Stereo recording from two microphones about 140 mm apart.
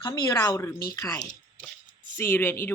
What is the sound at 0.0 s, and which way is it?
Speech, 30° left (ahead or behind).